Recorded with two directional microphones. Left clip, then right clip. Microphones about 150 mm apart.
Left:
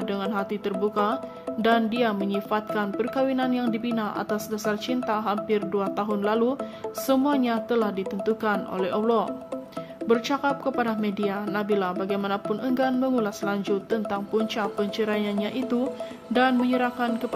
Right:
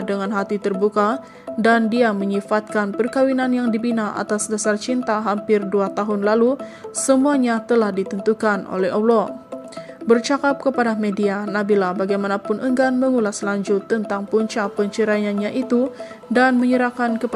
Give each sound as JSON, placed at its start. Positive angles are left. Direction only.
{"t": 0.1, "sound": "speech", "side_deg": -35}